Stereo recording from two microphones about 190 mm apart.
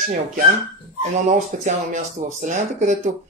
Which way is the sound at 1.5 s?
45° right (ahead or behind).